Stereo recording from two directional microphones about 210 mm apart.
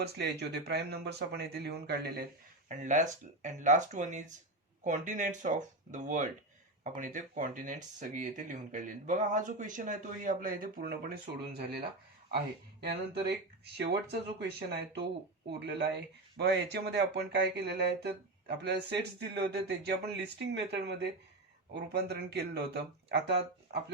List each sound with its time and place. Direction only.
0.0 s speech: 50° right (ahead or behind)
2.6 s speech: 35° right (ahead or behind)
12.8 s speech: 50° right (ahead or behind)